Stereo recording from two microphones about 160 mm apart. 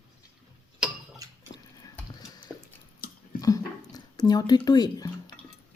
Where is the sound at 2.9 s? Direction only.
65° left (ahead or behind).